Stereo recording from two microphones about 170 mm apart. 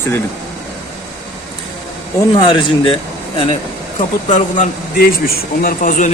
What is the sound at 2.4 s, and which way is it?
Speech, 30° left (ahead or behind).